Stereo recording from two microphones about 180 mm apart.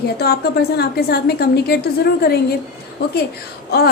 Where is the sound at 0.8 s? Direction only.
60° left (ahead or behind).